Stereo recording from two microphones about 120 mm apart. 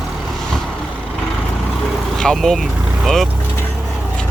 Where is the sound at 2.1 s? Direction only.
5° left (ahead or behind).